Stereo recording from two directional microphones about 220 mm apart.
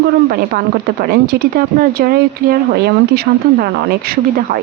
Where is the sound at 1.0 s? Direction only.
40° right (ahead or behind).